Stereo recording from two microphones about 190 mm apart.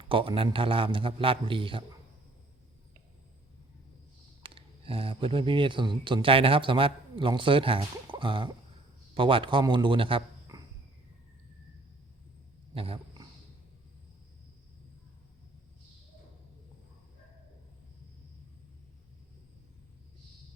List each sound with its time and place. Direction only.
0.1 s speech: 30° right (ahead or behind)
4.4 s a man's voice: 30° right (ahead or behind)
12.7 s a sound: 30° right (ahead or behind)